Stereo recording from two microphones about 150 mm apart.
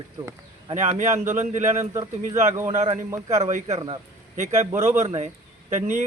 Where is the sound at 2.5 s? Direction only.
20° right (ahead or behind).